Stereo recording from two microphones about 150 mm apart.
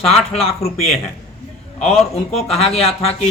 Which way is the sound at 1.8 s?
5° left (ahead or behind).